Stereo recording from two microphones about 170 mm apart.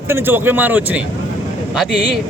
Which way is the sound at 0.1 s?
10° right (ahead or behind).